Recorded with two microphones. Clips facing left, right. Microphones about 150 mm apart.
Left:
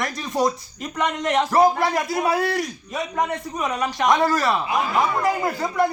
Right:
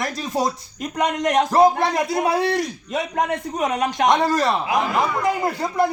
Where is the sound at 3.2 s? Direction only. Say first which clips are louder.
Right 3 dB; 55° right (ahead or behind).